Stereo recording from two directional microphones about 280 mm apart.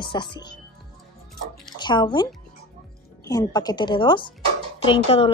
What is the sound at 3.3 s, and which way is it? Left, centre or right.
Speech, centre.